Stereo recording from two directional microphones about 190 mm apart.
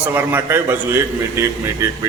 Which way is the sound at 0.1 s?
10° right (ahead or behind).